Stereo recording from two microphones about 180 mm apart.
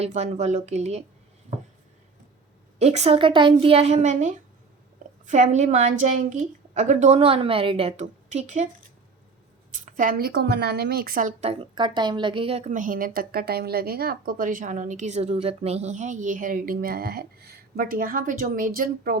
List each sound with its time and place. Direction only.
0.0 s a woman's voice: 40° right (ahead or behind)
2.7 s a woman's voice: 35° right (ahead or behind)
9.7 s a woman's voice: 45° right (ahead or behind)